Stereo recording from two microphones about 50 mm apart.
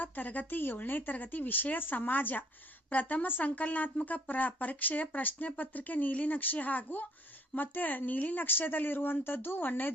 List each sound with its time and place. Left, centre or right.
0.0 s speech: left